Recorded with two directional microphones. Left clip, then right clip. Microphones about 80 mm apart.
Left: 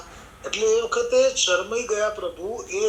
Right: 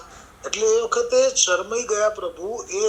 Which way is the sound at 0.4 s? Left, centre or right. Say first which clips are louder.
Right 2 dB; right.